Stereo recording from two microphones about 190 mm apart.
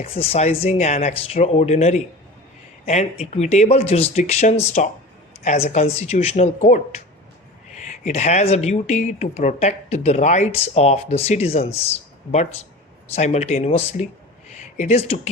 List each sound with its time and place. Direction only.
0.0 s speech: 30° left (ahead or behind)
7.9 s speech: 35° left (ahead or behind)
13.1 s speech: 35° left (ahead or behind)